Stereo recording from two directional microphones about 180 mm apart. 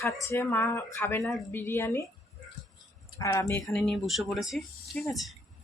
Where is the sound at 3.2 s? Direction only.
15° left (ahead or behind).